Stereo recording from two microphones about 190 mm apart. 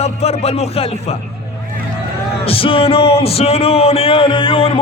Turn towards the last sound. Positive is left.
turn(degrees=30)  # may be behind; listen again after turning